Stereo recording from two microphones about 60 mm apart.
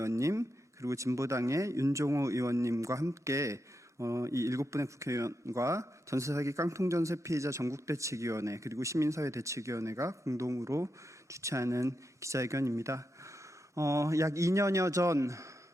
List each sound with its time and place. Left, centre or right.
0.0 s speech: right